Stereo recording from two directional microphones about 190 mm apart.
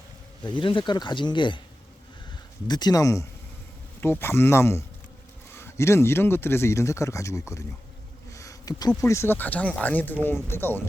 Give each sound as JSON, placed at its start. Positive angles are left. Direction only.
{"t": 0.4, "sound": "speech", "side_deg": 25}
{"t": 2.6, "sound": "speech", "side_deg": 20}
{"t": 8.3, "sound": "a sound", "side_deg": 15}
{"t": 9.0, "sound": "speech", "side_deg": 15}